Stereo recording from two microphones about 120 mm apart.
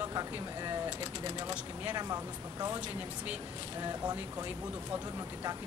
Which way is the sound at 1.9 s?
35° right (ahead or behind).